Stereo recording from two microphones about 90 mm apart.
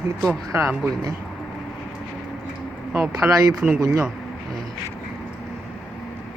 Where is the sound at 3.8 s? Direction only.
40° right (ahead or behind).